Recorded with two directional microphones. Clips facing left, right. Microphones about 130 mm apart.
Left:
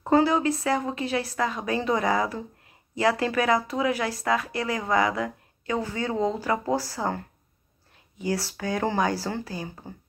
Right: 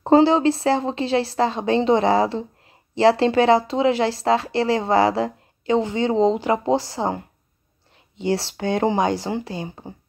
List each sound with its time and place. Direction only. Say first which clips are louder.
0.0 s speech: right 6 dB; 30° right (ahead or behind)